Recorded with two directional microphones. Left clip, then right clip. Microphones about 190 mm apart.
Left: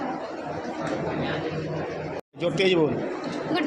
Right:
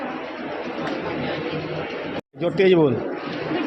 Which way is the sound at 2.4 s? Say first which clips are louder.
Right 5 dB; 45° right (ahead or behind).